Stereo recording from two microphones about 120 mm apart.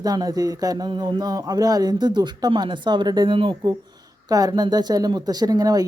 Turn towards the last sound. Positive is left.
turn(degrees=-30)  # may be behind; listen again after turning